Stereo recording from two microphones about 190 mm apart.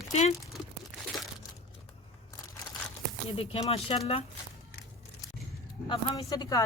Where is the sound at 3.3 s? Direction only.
30° left (ahead or behind).